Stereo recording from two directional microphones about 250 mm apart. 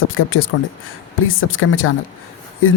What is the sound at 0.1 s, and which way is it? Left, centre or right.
Speech, left.